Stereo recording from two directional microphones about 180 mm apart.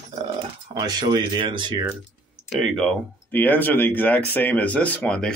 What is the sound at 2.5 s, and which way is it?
Speech, centre (ahead or behind).